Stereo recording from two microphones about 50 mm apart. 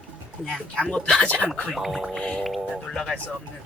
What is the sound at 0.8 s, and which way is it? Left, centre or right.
Speech, left.